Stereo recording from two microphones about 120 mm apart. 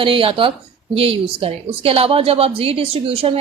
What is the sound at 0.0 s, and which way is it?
A woman's voice, 50° right (ahead or behind).